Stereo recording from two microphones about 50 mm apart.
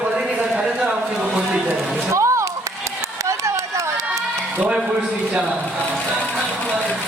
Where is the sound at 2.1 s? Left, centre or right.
Right.